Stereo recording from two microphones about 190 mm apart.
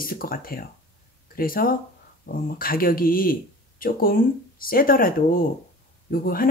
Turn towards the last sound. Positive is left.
turn(degrees=50)  # may be behind; listen again after turning